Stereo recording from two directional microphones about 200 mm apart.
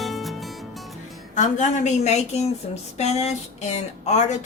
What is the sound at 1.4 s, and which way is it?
A woman's voice, 35° left (ahead or behind).